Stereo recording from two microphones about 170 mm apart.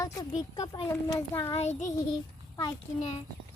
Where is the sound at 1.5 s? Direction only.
40° left (ahead or behind).